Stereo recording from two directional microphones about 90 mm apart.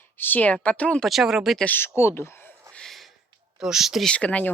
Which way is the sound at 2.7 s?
5° left (ahead or behind).